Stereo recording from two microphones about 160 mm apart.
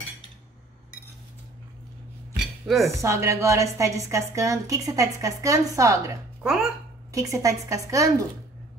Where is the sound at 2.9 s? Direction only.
20° right (ahead or behind).